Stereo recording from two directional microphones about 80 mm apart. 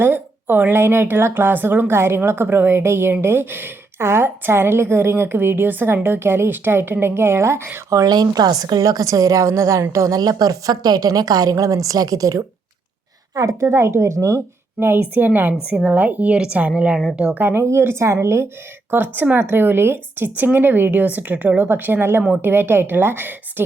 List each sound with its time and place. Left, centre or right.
0.0 s a woman's voice: right
8.0 s a woman's voice: right
10.2 s a woman's voice: right; by 17.0 s centre
17.3 s speech: right
19.1 s a woman's voice: right